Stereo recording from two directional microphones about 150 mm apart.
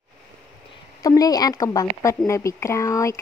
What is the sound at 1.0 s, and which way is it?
Speech, 25° left (ahead or behind).